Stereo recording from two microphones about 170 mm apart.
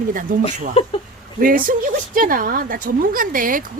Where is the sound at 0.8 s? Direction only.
30° left (ahead or behind).